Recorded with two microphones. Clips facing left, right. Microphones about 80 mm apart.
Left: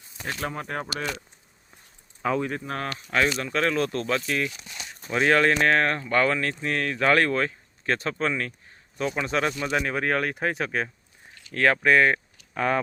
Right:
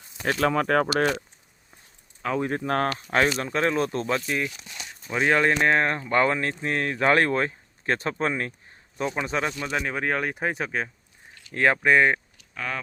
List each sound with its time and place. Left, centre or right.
0.3 s speech: right
2.2 s speech: centre
2.6 s speech: right
3.1 s speech: right
9.2 s speech: centre
11.5 s speech: centre
12.5 s speech: left